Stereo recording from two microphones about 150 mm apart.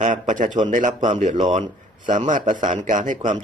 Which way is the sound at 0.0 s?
55° right (ahead or behind).